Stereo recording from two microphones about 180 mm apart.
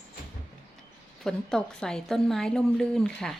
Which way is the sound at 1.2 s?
5° left (ahead or behind).